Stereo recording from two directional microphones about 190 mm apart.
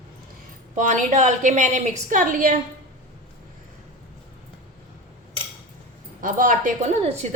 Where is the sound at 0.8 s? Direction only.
40° right (ahead or behind).